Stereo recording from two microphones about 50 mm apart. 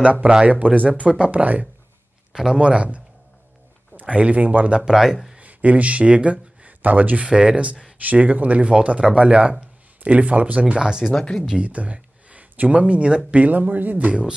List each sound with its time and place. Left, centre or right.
0.0 s speech: right
2.3 s speech: centre
4.0 s speech: right
4.8 s speech: centre
5.4 s speech: right; by 11.1 s centre
11.1 s speech: centre
11.5 s speech: right